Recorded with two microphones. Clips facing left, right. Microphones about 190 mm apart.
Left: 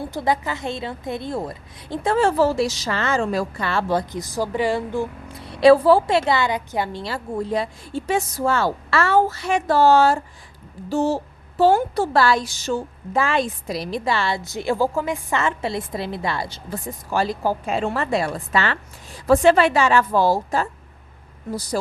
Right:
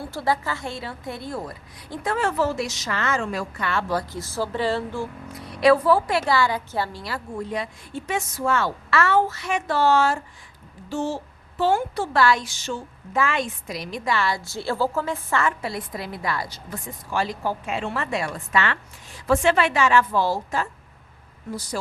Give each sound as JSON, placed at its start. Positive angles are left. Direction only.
{"t": 0.0, "sound": "a woman's voice", "side_deg": 20}
{"t": 5.3, "sound": "a woman's voice", "side_deg": 30}